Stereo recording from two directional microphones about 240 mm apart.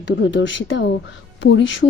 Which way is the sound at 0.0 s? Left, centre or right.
Left.